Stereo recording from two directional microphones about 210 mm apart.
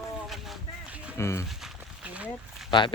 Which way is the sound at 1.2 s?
10° left (ahead or behind).